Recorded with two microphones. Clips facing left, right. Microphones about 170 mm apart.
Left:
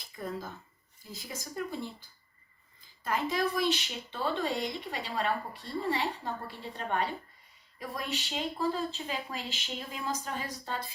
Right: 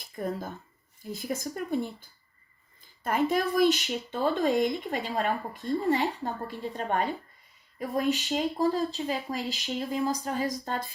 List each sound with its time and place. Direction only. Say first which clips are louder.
0.2 s speech: right 5 dB; 55° right (ahead or behind)